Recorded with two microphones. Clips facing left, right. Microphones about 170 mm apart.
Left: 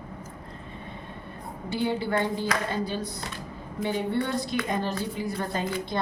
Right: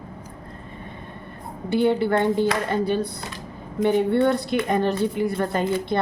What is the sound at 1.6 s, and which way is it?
A woman's voice, 60° right (ahead or behind).